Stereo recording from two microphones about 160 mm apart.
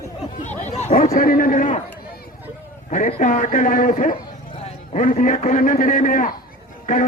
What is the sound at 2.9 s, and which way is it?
A man's voice, 45° left (ahead or behind).